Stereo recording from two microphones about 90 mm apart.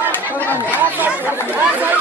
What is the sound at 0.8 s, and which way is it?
Speech, 20° right (ahead or behind).